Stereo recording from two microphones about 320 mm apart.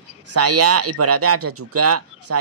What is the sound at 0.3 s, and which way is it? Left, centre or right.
Speech, right.